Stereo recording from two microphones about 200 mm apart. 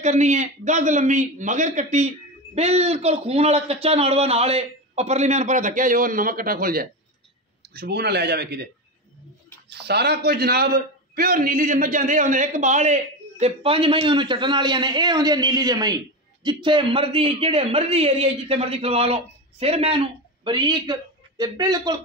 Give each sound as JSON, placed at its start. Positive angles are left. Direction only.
{"t": 0.0, "sound": "a man's voice", "side_deg": -35}
{"t": 9.7, "sound": "a man's voice", "side_deg": -55}